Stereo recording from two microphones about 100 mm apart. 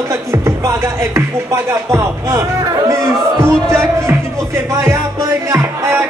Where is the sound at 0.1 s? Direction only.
30° right (ahead or behind).